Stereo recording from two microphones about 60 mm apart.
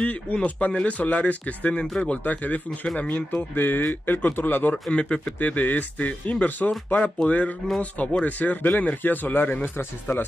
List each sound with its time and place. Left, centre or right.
0.0 s speech: left
4.9 s speech: centre; by 10.2 s left